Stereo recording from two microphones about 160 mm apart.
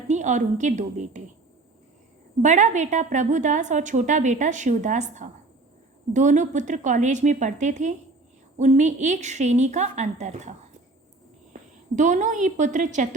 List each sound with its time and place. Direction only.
0.1 s a woman's voice: 50° right (ahead or behind)
2.4 s a woman's voice: 50° right (ahead or behind)
11.9 s a woman's voice: 50° right (ahead or behind)